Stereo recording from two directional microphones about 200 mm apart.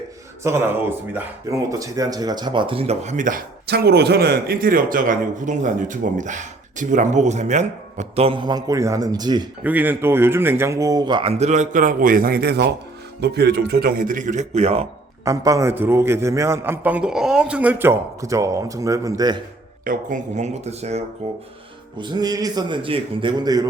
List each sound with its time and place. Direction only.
0.4 s speech: 10° right (ahead or behind)
9.6 s a man's voice: 10° right (ahead or behind); by 14.8 s 30° right (ahead or behind)
15.2 s a man's voice: 15° right (ahead or behind)
19.8 s a man's voice: 40° right (ahead or behind); by 23.6 s 20° right (ahead or behind)